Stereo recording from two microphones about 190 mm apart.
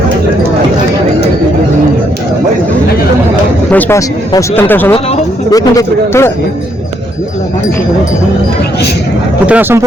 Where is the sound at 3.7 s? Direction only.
10° left (ahead or behind).